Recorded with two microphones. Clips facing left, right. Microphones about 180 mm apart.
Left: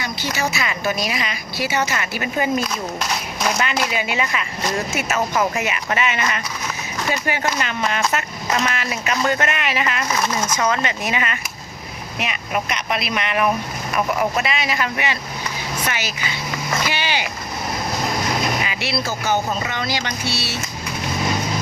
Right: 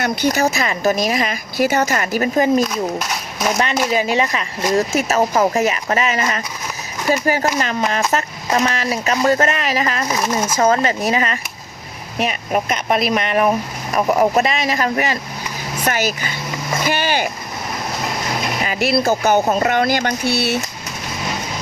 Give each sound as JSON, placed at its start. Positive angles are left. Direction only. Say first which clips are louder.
{"t": 0.3, "sound": "speech", "louder": "right 5 dB", "side_deg": -40}
{"t": 2.7, "sound": "speech", "louder": "right 4 dB", "side_deg": 0}
{"t": 3.8, "sound": "speech", "louder": "right 6 dB", "side_deg": -35}
{"t": 10.1, "sound": "speech", "louder": "right 2 dB", "side_deg": -15}
{"t": 10.6, "sound": "speech", "louder": "right 8 dB", "side_deg": -40}
{"t": 18.6, "sound": "speech", "louder": "right 7 dB", "side_deg": -45}